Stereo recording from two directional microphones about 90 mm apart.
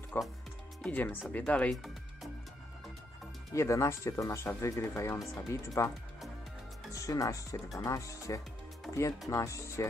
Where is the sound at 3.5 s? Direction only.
35° left (ahead or behind).